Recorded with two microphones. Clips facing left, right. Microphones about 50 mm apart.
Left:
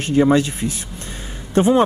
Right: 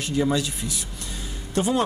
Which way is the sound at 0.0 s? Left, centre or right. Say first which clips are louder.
Left 8 dB; left.